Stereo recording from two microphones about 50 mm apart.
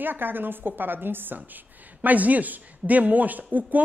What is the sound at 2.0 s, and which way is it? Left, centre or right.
Speech, right.